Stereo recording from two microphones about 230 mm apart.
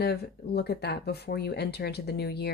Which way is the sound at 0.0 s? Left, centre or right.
Left.